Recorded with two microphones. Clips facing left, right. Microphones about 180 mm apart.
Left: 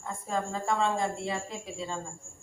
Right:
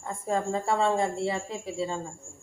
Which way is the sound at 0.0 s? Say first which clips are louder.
Right 4 dB; 30° right (ahead or behind).